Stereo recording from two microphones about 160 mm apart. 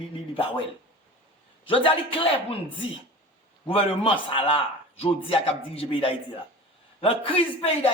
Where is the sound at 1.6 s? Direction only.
35° left (ahead or behind).